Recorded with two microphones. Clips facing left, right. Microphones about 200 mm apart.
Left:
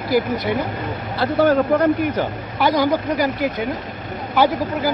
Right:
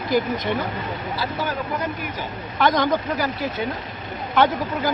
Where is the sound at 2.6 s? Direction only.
10° left (ahead or behind).